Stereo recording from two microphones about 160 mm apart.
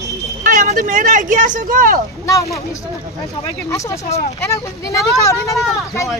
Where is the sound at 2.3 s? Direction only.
20° left (ahead or behind).